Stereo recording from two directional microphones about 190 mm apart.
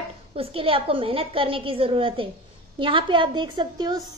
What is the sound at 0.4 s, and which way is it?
A woman's voice, 30° right (ahead or behind).